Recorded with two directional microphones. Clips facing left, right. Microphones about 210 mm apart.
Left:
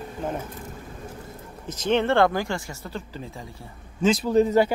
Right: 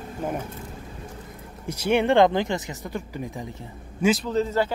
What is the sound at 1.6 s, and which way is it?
Speech, 10° right (ahead or behind).